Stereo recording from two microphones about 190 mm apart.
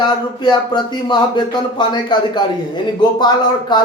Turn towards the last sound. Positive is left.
turn(degrees=20)  # may be behind; listen again after turning